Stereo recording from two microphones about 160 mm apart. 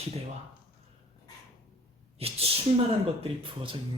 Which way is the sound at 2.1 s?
40° right (ahead or behind).